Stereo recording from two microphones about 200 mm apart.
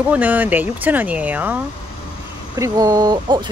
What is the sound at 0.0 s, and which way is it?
Speech, 5° right (ahead or behind).